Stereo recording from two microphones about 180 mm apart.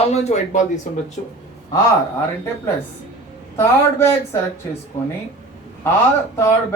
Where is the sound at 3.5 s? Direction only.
15° left (ahead or behind).